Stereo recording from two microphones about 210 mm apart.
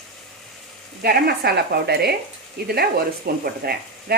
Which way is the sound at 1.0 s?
50° right (ahead or behind).